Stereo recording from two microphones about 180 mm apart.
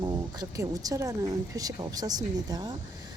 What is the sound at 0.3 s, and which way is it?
A woman's voice, 20° right (ahead or behind).